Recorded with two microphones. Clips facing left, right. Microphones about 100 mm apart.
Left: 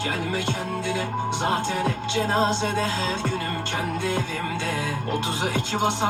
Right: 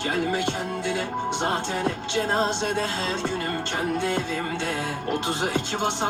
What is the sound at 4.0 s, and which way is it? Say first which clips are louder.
Music: even; 20° right (ahead or behind).